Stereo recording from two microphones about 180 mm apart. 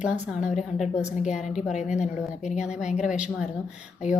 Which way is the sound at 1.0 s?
40° left (ahead or behind).